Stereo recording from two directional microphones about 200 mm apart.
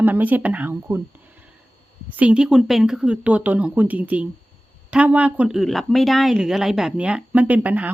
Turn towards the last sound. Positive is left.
turn(degrees=-10)  # may be behind; listen again after turning